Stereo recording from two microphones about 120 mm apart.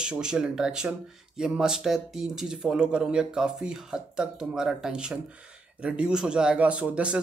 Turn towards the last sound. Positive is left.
turn(degrees=-10)  # may be behind; listen again after turning